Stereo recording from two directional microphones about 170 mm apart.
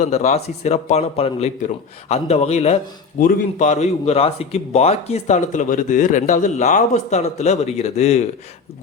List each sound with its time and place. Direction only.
0.0 s a man's voice: 40° left (ahead or behind)
3.2 s a man's voice: 50° left (ahead or behind)